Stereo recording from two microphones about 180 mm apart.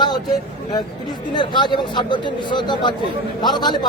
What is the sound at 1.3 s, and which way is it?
Speech, 25° left (ahead or behind).